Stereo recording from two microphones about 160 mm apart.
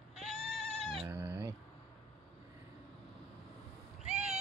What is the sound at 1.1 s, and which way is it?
Cat, 10° right (ahead or behind).